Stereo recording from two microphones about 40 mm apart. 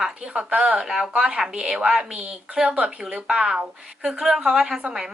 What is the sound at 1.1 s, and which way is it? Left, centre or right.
Speech, right.